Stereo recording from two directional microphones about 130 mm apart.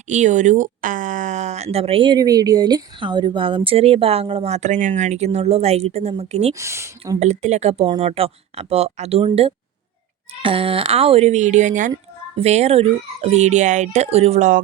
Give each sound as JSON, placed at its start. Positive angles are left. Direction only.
{"t": 0.1, "sound": "speech", "side_deg": -65}
{"t": 2.1, "sound": "speech", "side_deg": -30}
{"t": 6.5, "sound": "speech", "side_deg": -20}
{"t": 7.2, "sound": "speech", "side_deg": -60}
{"t": 12.4, "sound": "speech", "side_deg": -55}